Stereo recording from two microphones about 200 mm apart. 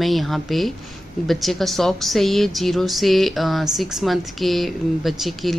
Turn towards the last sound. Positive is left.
turn(degrees=0)  # may be behind; listen again after turning